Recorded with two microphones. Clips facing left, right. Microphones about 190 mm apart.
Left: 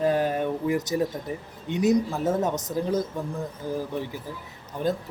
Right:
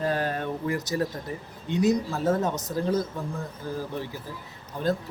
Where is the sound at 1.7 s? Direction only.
20° left (ahead or behind).